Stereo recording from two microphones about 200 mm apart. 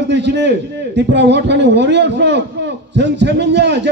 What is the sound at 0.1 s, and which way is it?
A man's voice, 60° right (ahead or behind).